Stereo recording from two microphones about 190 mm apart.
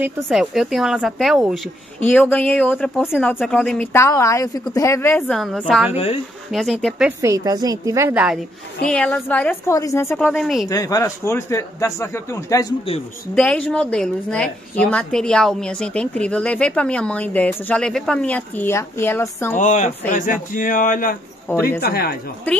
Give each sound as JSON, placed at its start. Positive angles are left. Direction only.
{"t": 0.0, "sound": "a woman's voice", "side_deg": -5}
{"t": 2.0, "sound": "a woman's voice", "side_deg": 10}
{"t": 5.3, "sound": "a woman's voice", "side_deg": 0}
{"t": 5.9, "sound": "speech", "side_deg": 30}
{"t": 6.5, "sound": "a woman's voice", "side_deg": 0}
{"t": 7.2, "sound": "a woman's voice", "side_deg": -15}
{"t": 8.8, "sound": "a woman's voice", "side_deg": 5}
{"t": 10.7, "sound": "a woman's voice", "side_deg": 20}
{"t": 19.5, "sound": "speech", "side_deg": 40}
{"t": 21.5, "sound": "a woman's voice", "side_deg": 10}
{"t": 21.7, "sound": "speech", "side_deg": 55}